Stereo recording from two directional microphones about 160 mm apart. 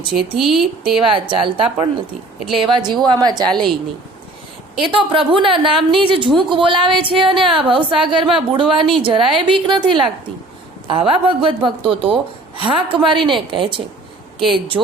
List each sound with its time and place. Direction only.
0.3 s speech: centre (ahead or behind)
0.9 s a woman's voice: 35° right (ahead or behind)
3.5 s speech: centre (ahead or behind)
4.8 s a woman's voice: 30° right (ahead or behind)